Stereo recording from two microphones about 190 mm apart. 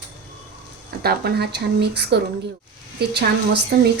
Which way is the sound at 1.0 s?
55° right (ahead or behind).